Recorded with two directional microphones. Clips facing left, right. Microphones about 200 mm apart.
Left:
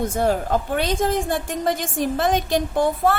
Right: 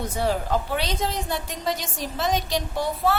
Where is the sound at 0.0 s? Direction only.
50° left (ahead or behind).